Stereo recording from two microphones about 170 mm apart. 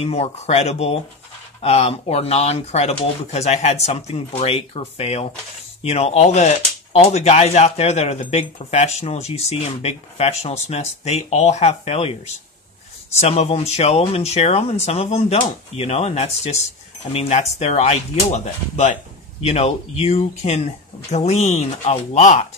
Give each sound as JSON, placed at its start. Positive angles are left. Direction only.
{"t": 0.0, "sound": "speech", "side_deg": 35}